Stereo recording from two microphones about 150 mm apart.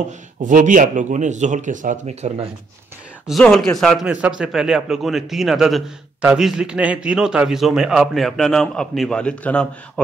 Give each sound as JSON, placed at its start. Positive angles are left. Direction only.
{"t": 0.4, "sound": "speech", "side_deg": -55}
{"t": 3.3, "sound": "a man's voice", "side_deg": 0}